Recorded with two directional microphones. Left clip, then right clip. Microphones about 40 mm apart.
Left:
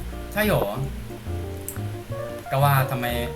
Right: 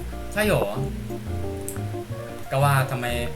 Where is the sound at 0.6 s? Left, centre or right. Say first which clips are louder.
Even; centre.